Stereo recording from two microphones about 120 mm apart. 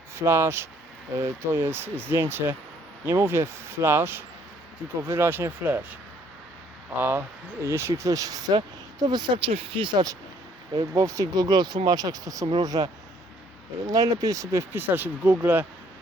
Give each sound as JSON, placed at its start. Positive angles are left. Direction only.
{"t": 0.2, "sound": "speech", "side_deg": -20}
{"t": 7.0, "sound": "speech", "side_deg": -15}